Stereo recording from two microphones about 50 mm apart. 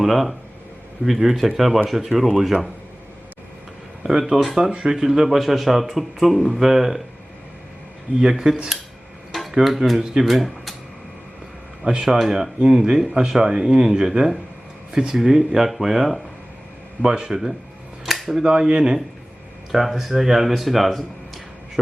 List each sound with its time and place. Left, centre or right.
0.0 s speech: centre
4.0 s speech: centre
8.2 s speech: centre
11.9 s speech: centre
17.0 s speech: centre
18.0 s a sound: centre
18.4 s speech: centre
19.7 s speech: centre